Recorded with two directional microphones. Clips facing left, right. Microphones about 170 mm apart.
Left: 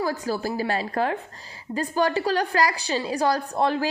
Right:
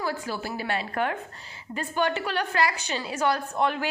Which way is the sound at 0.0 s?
40° left (ahead or behind).